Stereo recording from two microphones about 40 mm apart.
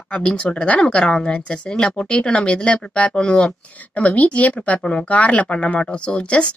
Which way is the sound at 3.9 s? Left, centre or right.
Left.